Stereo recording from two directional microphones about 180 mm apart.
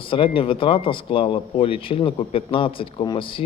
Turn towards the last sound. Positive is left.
turn(degrees=30)  # may be behind; listen again after turning